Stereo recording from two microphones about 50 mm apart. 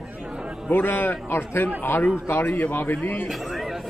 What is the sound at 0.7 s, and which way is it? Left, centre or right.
A man's voice, left.